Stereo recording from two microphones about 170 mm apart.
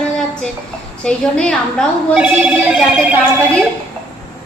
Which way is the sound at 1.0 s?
5° left (ahead or behind).